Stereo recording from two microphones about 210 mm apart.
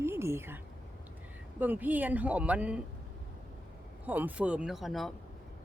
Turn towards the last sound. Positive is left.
turn(degrees=0)  # may be behind; listen again after turning